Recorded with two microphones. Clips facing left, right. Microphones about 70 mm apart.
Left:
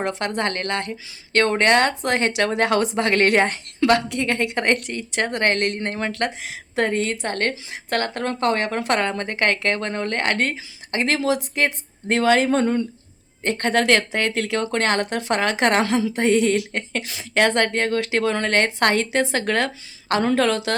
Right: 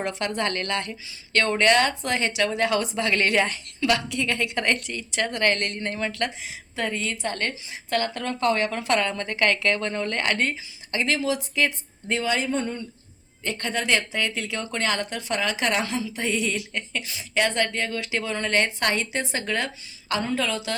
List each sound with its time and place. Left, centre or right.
0.0 s a woman's voice: left
13.4 s speech: left
16.2 s speech: left